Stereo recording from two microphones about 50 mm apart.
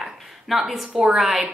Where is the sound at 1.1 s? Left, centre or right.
Centre.